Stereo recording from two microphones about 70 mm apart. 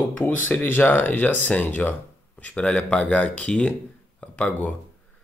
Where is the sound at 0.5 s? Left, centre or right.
Left.